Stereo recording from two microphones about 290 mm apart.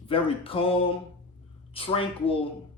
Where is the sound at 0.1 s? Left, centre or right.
Centre.